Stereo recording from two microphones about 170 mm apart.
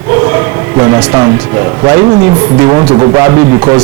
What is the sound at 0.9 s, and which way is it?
Speech, 20° right (ahead or behind).